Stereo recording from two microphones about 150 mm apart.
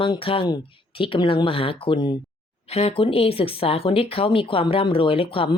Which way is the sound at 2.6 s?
40° left (ahead or behind).